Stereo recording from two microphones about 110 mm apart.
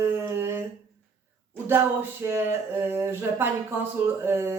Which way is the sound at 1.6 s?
20° right (ahead or behind).